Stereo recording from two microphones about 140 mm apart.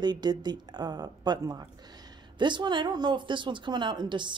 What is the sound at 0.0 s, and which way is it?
Speech, 30° right (ahead or behind).